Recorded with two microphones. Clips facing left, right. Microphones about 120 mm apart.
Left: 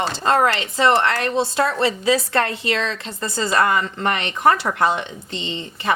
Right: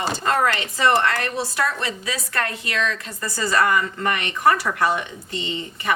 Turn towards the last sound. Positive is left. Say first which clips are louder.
# left 2 dB
turn(degrees=25)  # may be behind; listen again after turning